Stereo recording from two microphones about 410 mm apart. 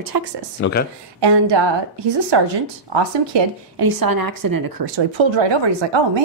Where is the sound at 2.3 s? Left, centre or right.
Right.